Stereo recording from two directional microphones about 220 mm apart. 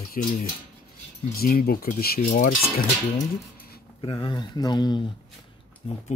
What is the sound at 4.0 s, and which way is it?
Speech, 20° left (ahead or behind).